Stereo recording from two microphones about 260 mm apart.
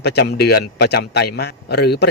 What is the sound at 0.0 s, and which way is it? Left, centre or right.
A man's voice, left.